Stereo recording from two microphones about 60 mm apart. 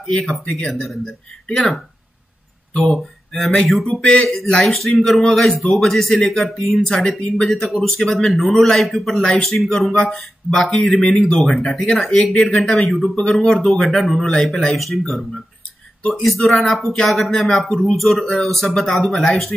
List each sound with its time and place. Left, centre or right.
0.3 s speech: centre
2.8 s speech: centre
4.7 s speech: centre
6.9 s speech: centre
13.5 s speech: centre